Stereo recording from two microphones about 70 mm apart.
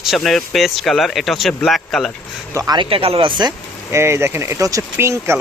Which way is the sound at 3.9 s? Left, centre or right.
Right.